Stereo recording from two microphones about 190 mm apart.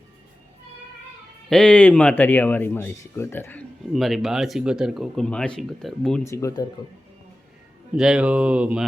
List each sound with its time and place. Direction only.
1.5 s speech: 5° left (ahead or behind)
6.2 s speech: 15° left (ahead or behind)
7.9 s speech: 5° right (ahead or behind)